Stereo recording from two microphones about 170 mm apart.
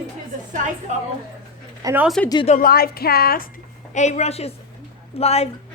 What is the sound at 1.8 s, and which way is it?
Speech, 20° right (ahead or behind).